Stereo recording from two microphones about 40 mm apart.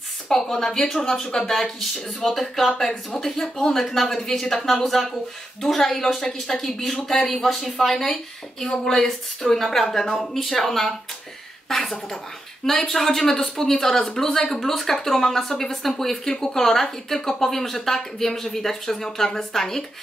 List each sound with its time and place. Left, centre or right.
0.3 s speech: centre
1.4 s speech: centre